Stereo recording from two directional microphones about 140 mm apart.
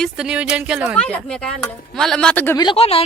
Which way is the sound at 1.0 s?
10° left (ahead or behind).